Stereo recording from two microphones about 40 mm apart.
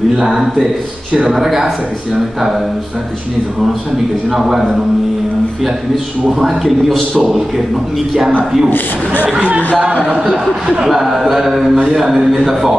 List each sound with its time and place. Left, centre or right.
0.2 s a man's voice: centre
4.3 s a man's voice: centre
6.4 s a man's voice: centre
8.6 s a man's voice: left
9.4 s speech: right
10.9 s a man's voice: centre